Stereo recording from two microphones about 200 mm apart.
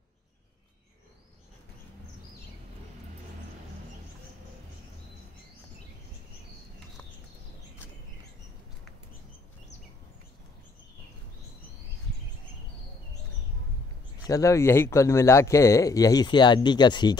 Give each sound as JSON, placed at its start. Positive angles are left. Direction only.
{"t": 14.2, "sound": "speech", "side_deg": 15}